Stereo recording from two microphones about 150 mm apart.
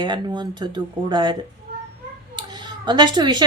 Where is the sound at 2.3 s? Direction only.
30° right (ahead or behind).